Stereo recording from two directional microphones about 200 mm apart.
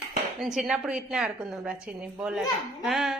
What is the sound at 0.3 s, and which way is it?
A woman's voice, centre (ahead or behind).